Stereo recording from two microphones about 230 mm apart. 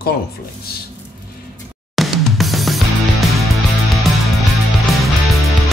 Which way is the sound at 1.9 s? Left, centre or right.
Centre.